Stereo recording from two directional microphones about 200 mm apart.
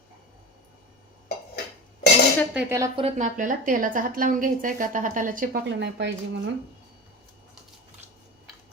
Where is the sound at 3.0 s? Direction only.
35° right (ahead or behind).